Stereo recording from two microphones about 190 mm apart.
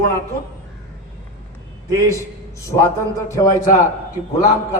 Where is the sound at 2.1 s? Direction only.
15° left (ahead or behind).